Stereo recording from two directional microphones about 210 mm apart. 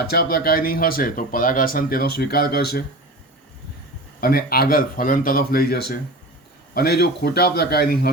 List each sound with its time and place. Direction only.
0.1 s speech: 45° left (ahead or behind)
4.2 s speech: 45° left (ahead or behind)